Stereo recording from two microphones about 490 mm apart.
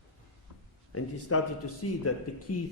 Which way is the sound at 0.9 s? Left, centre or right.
Left.